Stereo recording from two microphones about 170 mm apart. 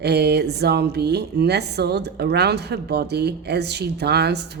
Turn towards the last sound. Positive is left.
turn(degrees=-75)  # may be behind; listen again after turning